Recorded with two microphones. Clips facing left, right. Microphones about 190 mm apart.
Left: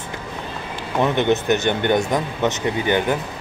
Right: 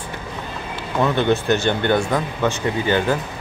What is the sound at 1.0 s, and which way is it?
Speech, 20° left (ahead or behind).